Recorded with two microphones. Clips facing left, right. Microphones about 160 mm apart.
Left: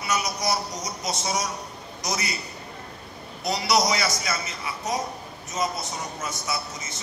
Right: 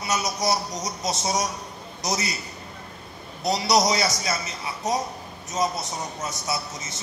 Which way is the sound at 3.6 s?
30° right (ahead or behind).